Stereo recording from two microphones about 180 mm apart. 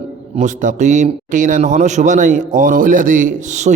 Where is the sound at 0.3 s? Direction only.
45° right (ahead or behind).